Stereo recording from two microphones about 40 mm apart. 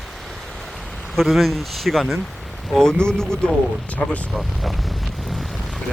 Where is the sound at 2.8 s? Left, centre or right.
Centre.